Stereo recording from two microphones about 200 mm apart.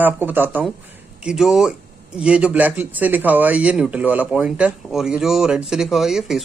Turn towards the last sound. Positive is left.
turn(degrees=0)  # may be behind; listen again after turning